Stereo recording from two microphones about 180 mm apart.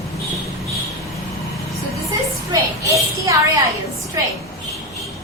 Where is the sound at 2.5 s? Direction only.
15° right (ahead or behind).